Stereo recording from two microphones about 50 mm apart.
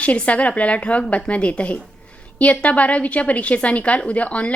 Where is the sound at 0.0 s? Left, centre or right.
Left.